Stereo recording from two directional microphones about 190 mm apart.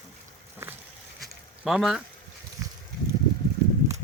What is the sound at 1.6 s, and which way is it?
Speech, centre (ahead or behind).